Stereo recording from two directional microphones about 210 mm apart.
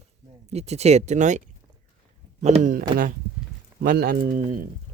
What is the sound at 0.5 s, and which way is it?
Speech, 30° right (ahead or behind).